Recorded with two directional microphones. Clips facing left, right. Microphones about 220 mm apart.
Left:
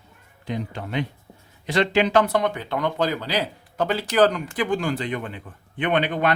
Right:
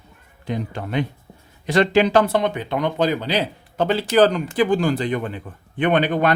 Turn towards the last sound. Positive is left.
turn(degrees=-40)  # may be behind; listen again after turning